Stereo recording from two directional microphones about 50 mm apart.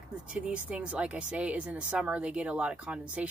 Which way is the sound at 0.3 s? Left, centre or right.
Right.